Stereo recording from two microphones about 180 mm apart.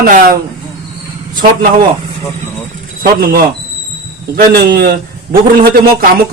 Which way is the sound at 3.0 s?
50° right (ahead or behind).